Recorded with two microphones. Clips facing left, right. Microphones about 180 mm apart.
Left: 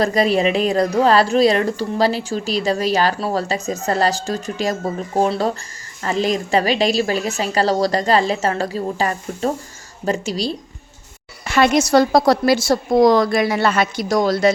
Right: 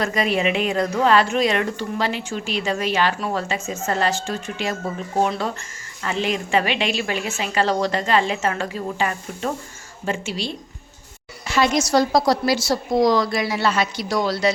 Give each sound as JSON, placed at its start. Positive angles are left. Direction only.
{"t": 0.0, "sound": "a woman's voice", "side_deg": 35}
{"t": 11.4, "sound": "a woman's voice", "side_deg": 60}